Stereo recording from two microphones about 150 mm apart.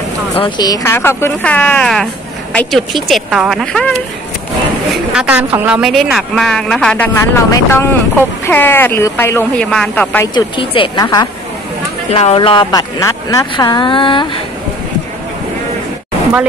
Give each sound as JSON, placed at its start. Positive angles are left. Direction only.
{"t": 0.4, "sound": "a woman's voice", "side_deg": 25}
{"t": 5.1, "sound": "a woman's voice", "side_deg": -10}
{"t": 7.2, "sound": "speech", "side_deg": 20}
{"t": 10.3, "sound": "speech", "side_deg": 35}
{"t": 12.1, "sound": "speech", "side_deg": 40}